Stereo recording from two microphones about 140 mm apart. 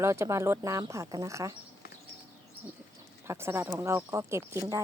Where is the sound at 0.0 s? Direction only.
20° right (ahead or behind).